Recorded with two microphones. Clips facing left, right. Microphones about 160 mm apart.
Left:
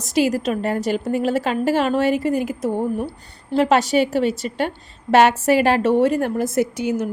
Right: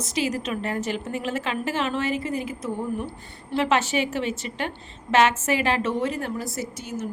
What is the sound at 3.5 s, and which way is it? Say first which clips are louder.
A woman's voice: left 6 dB; 40° left (ahead or behind).